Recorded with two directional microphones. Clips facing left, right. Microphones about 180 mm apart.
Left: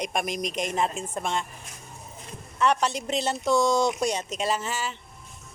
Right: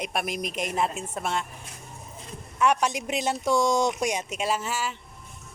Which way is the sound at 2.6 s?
10° right (ahead or behind).